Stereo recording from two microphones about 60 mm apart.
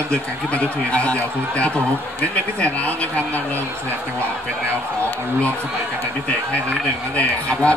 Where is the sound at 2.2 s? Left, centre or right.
Left.